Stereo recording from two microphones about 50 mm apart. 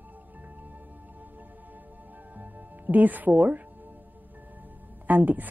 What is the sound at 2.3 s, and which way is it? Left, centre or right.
Music, right.